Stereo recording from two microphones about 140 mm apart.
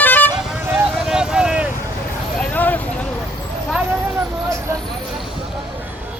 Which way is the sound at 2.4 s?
10° left (ahead or behind).